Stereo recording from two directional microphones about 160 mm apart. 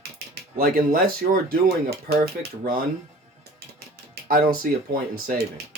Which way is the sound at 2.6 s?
60° right (ahead or behind).